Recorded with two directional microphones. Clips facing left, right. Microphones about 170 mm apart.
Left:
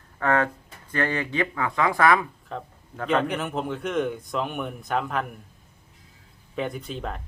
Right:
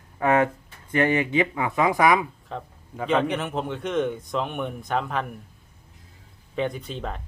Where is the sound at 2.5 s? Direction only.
Centre (ahead or behind).